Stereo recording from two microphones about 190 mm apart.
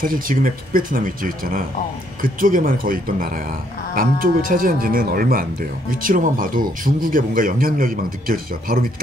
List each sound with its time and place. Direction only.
0.0 s speech: 45° right (ahead or behind)